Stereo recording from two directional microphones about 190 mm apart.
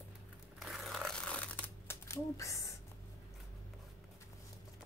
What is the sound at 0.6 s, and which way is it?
Crumpling, centre (ahead or behind).